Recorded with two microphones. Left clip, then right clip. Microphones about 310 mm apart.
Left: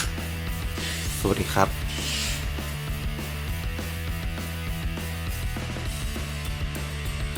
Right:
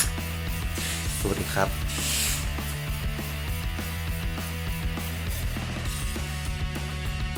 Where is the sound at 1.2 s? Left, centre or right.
Left.